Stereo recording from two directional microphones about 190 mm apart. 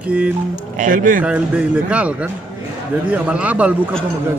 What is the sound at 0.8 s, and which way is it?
Speech, 45° right (ahead or behind).